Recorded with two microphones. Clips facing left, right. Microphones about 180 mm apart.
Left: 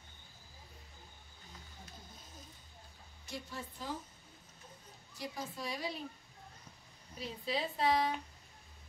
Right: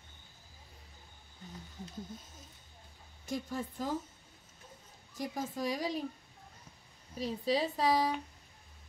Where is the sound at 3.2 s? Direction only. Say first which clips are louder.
Right 8 dB; 45° right (ahead or behind).